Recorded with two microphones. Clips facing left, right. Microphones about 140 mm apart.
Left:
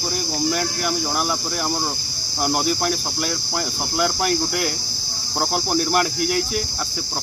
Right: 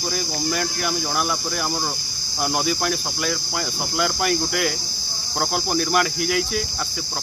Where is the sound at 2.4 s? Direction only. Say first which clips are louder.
Left 2 dB; 5° left (ahead or behind).